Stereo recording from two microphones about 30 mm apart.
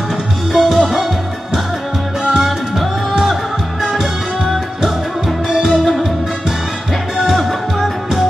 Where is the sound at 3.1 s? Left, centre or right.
Centre.